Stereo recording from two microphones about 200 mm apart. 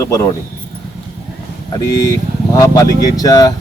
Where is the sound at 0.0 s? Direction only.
15° left (ahead or behind).